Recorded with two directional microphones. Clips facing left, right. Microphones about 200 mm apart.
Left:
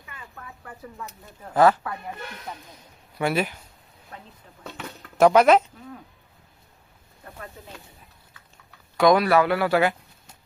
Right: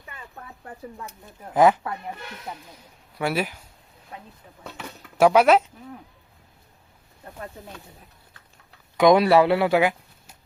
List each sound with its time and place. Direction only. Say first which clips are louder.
1.5 s speech: right 1 dB; 15° right (ahead or behind)
3.2 s speech: left 1 dB; 5° right (ahead or behind)
9.0 s speech: right 2 dB; 25° right (ahead or behind)